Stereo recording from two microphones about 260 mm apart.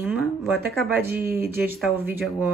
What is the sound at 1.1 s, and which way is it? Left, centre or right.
Speech, right.